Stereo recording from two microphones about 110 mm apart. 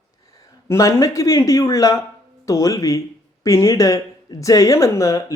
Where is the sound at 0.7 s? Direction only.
30° left (ahead or behind).